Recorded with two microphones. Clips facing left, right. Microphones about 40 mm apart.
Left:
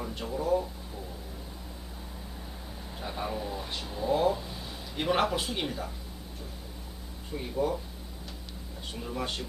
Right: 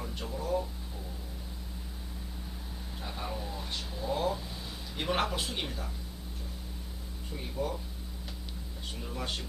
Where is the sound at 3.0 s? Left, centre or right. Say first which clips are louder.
Left 5 dB; centre.